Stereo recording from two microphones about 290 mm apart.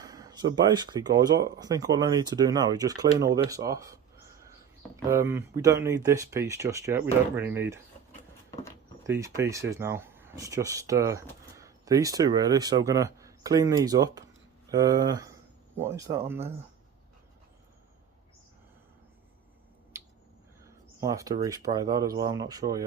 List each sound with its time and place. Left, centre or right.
0.0 s speech: centre
5.0 s speech: centre
9.0 s speech: centre
21.0 s speech: centre